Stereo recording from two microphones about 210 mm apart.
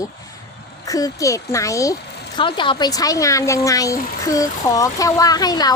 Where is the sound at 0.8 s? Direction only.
15° left (ahead or behind).